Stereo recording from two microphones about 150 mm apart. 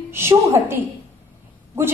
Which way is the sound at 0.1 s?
15° right (ahead or behind).